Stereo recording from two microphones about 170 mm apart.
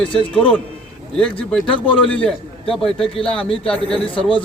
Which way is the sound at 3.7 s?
5° left (ahead or behind).